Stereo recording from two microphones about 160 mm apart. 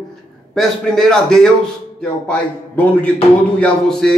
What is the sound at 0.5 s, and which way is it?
Speech, 5° left (ahead or behind).